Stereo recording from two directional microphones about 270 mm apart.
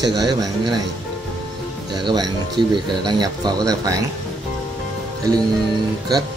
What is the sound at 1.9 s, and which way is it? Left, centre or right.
Speech, centre.